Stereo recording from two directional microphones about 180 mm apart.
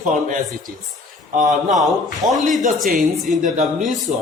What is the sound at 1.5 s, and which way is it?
A man's voice, centre (ahead or behind).